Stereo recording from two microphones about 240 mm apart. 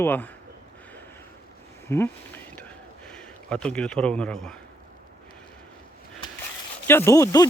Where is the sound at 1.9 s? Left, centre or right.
Centre.